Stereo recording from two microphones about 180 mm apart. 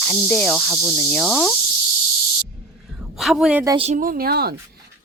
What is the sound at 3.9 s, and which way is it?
Speech, 50° right (ahead or behind).